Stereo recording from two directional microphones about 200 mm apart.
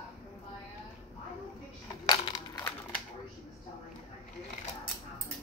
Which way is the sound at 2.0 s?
20° left (ahead or behind).